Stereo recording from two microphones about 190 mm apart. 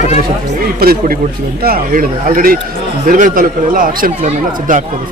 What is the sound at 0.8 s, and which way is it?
A man's voice, 50° right (ahead or behind).